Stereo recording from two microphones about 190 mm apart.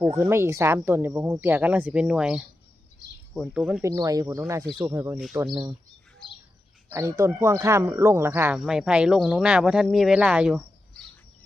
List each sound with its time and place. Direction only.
0.1 s speech: 15° right (ahead or behind)
6.9 s speech: 15° right (ahead or behind)